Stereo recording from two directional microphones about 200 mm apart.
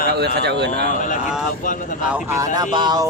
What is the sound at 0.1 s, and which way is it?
Speech, 55° right (ahead or behind).